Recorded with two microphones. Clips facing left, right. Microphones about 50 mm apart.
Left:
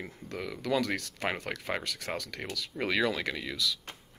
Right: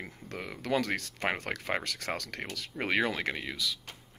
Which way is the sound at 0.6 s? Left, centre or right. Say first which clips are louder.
Even; right.